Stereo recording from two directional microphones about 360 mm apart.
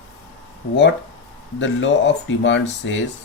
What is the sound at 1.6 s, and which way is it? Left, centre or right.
Speech, left.